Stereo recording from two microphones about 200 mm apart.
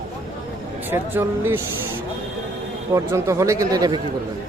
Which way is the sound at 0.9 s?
10° right (ahead or behind).